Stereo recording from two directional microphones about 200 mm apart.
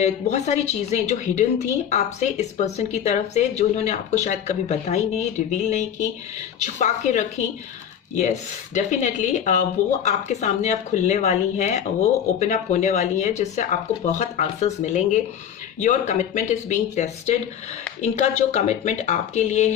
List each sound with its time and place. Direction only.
0.0 s speech: 35° left (ahead or behind)